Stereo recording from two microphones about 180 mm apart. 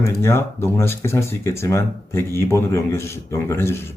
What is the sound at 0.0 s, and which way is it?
Speech, 15° left (ahead or behind).